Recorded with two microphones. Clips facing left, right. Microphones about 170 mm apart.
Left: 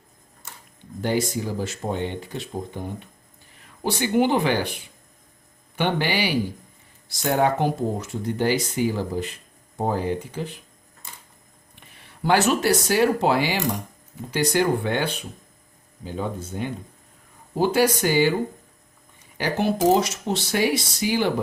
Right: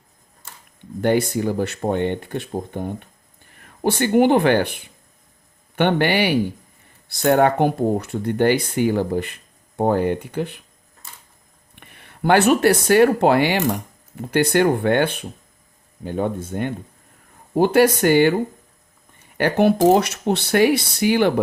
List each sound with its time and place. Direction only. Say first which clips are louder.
1.0 s speech: right 6 dB; 60° right (ahead or behind)
11.7 s speech: right 4 dB; 60° right (ahead or behind)
19.4 s speech: right 6 dB; 60° right (ahead or behind)